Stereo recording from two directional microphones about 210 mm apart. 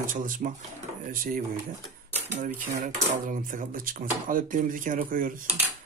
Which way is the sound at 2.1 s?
35° right (ahead or behind).